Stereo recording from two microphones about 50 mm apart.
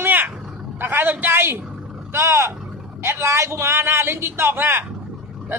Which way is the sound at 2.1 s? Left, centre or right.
Right.